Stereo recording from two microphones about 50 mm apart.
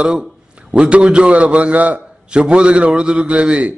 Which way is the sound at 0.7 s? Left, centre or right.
Right.